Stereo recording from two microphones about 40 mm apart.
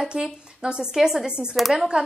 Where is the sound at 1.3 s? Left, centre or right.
Right.